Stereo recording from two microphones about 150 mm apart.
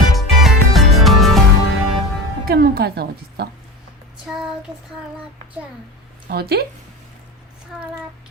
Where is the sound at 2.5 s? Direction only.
85° right.